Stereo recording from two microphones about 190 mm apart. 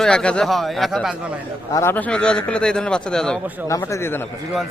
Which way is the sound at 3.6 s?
15° left (ahead or behind).